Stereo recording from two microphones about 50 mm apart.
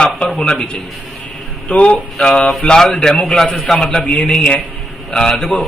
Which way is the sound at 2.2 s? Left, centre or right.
Centre.